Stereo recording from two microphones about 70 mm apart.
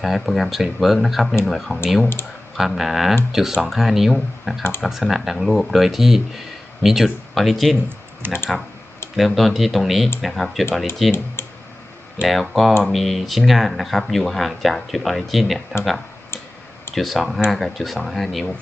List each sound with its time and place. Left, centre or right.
0.0 s speech: centre
8.2 s speech: right
9.1 s speech: centre
11.4 s tick: left
12.2 s speech: centre
16.9 s speech: centre